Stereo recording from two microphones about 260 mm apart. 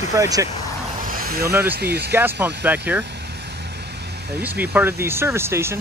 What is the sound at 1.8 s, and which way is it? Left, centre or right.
Speech, right.